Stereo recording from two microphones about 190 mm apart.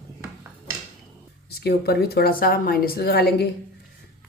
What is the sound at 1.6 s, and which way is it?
A woman's voice, 55° left (ahead or behind).